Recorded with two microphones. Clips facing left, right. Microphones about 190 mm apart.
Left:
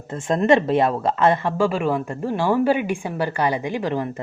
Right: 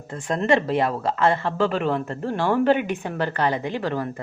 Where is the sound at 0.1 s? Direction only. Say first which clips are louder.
Left 4 dB; 25° left (ahead or behind).